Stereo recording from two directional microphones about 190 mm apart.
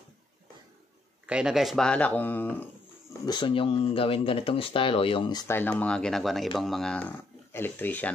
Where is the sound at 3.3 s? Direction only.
25° left (ahead or behind).